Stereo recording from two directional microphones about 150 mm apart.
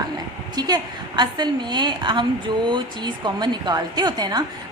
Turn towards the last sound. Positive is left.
turn(degrees=-25)  # may be behind; listen again after turning